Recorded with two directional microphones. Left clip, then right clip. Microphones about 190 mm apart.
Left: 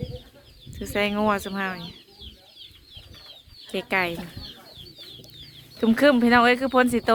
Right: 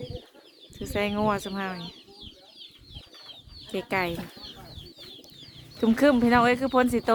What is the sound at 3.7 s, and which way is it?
Speech, 5° right (ahead or behind).